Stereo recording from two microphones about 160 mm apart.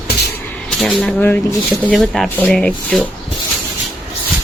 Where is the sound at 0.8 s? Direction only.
5° left (ahead or behind).